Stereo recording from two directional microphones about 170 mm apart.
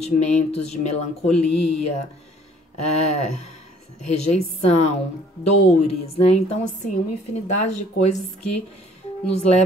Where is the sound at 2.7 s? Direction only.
40° left (ahead or behind).